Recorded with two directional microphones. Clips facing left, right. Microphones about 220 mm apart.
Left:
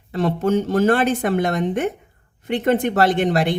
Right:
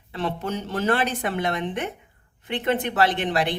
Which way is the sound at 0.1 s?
45° left (ahead or behind).